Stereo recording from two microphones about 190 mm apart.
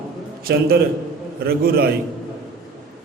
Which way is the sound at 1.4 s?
55° right (ahead or behind).